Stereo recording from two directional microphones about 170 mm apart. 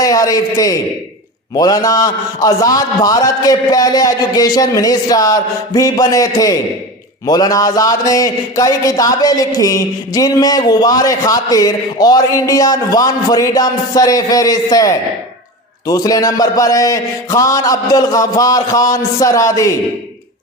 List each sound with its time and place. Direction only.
0.0 s a man's voice: 20° left (ahead or behind)